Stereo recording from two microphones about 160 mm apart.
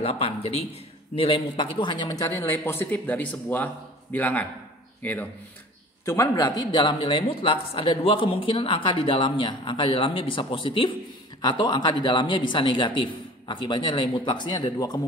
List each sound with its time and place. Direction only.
0.0 s a man's voice: 40° left (ahead or behind)